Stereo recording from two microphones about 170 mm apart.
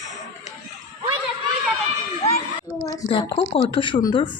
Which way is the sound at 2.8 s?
25° left (ahead or behind).